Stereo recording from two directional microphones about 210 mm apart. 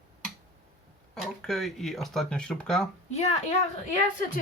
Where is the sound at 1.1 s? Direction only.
Centre (ahead or behind).